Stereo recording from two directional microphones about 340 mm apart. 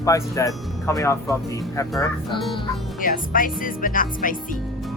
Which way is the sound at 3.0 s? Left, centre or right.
Left.